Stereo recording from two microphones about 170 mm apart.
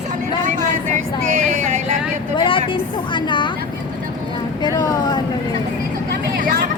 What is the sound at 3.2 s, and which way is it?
Speech, 30° left (ahead or behind).